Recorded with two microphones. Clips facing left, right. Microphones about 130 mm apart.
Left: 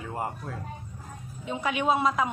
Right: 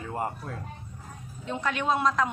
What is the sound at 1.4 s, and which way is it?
Speech, 10° left (ahead or behind).